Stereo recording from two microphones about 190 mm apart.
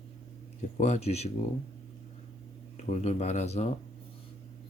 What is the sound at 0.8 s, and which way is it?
Speech, 35° left (ahead or behind).